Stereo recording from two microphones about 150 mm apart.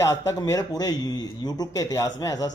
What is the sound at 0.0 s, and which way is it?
A man's voice, 20° left (ahead or behind).